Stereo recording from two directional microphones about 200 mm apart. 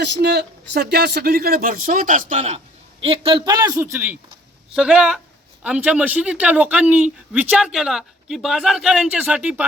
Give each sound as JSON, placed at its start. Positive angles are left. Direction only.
{"t": 0.0, "sound": "a man's voice", "side_deg": -55}